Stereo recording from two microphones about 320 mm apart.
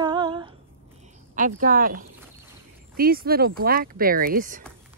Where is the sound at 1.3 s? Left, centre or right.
Right.